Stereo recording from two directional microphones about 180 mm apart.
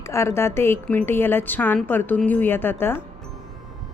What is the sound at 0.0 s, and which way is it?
A woman's voice, 15° left (ahead or behind).